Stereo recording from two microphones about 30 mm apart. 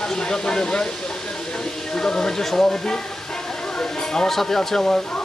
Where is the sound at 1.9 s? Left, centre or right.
Left.